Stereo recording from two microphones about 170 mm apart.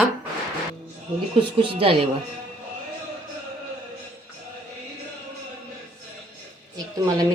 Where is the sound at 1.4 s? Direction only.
30° right (ahead or behind).